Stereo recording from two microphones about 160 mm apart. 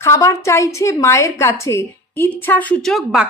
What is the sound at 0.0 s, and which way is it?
A woman's voice, 20° left (ahead or behind).